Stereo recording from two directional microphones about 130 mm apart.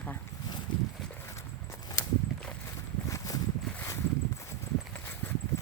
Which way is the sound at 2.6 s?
25° left (ahead or behind).